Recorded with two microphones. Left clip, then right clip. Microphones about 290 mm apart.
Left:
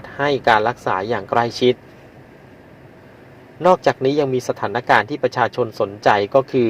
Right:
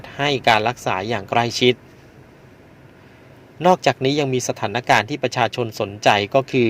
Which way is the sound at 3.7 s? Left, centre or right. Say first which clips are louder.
Left 1 dB; right.